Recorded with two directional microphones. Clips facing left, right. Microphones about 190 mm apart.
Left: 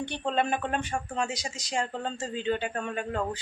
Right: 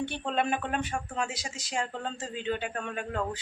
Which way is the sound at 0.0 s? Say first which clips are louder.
Left 1 dB; 5° right (ahead or behind).